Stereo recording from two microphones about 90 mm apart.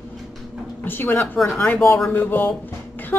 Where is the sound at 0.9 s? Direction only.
20° left (ahead or behind).